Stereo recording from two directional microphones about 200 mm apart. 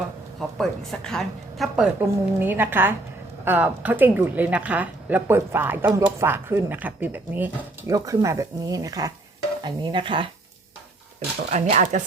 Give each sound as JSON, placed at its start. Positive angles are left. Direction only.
{"t": 0.3, "sound": "a woman's voice", "side_deg": 0}
{"t": 11.7, "sound": "speech", "side_deg": -35}